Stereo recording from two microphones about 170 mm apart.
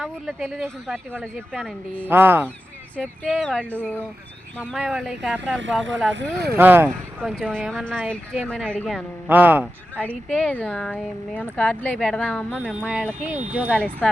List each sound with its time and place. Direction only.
0.0 s speech: 5° right (ahead or behind)
2.0 s speech: 10° right (ahead or behind)
3.0 s speech: 5° left (ahead or behind)
4.6 s speech: 5° right (ahead or behind)
6.1 s speech: 70° right (ahead or behind)
6.6 s speech: 10° right (ahead or behind)
7.2 s speech: centre (ahead or behind)
9.3 s speech: 10° right (ahead or behind)
10.0 s speech: 5° left (ahead or behind)
13.5 s speech: 10° right (ahead or behind)
13.7 s speech: 5° left (ahead or behind)